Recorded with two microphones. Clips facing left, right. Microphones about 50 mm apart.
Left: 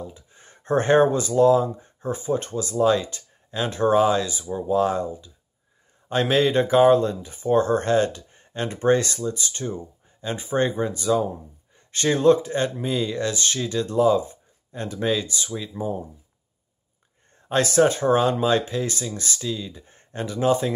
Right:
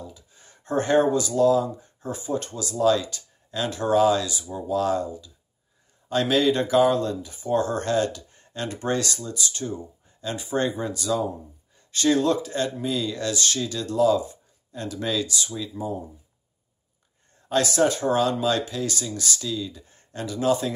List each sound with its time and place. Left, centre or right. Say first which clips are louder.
0.0 s speech: left 4 dB; left
17.5 s speech: left 2 dB; left